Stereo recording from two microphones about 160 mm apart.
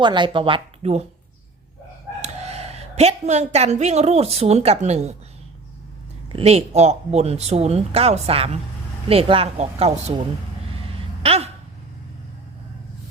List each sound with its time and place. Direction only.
0.0 s speech: 30° right (ahead or behind)
2.2 s a woman's voice: 40° right (ahead or behind)
6.2 s speech: 40° right (ahead or behind)
11.2 s a sound: 40° right (ahead or behind)